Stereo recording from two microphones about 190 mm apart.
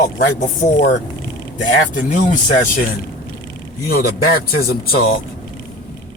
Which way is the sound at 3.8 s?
55° left (ahead or behind).